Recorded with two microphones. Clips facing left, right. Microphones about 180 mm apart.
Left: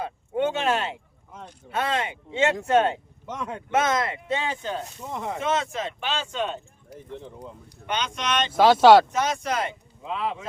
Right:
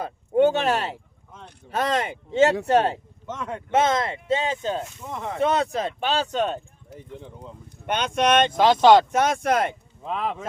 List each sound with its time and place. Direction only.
0.0 s speech: 40° right (ahead or behind)
3.2 s speech: 15° left (ahead or behind)
3.7 s speech: 25° right (ahead or behind)
5.4 s speech: 35° right (ahead or behind)
7.9 s speech: 55° right (ahead or behind)
8.5 s speech: 10° left (ahead or behind)
9.1 s speech: 55° right (ahead or behind)